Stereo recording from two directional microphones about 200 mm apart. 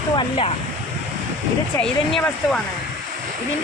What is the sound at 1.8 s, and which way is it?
Speech, 5° left (ahead or behind).